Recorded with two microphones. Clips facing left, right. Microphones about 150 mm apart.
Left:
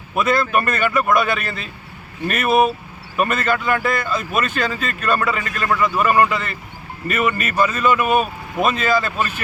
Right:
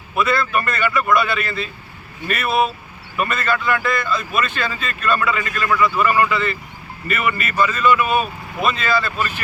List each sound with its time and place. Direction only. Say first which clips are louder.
0.5 s speech: left 2 dB; 45° left (ahead or behind)